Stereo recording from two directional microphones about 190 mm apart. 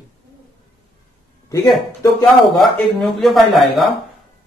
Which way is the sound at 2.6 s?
Centre (ahead or behind).